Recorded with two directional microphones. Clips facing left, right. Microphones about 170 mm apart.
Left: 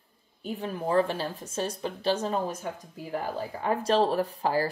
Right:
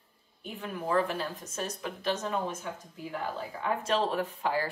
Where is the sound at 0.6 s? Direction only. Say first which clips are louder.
Left 3 dB; 35° left (ahead or behind).